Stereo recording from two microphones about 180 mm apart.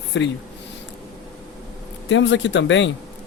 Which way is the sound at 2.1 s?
90° left.